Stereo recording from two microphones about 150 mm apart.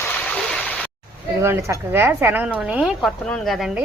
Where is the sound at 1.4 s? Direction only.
20° right (ahead or behind).